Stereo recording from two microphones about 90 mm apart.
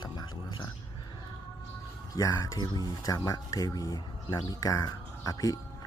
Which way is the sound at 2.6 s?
50° left (ahead or behind).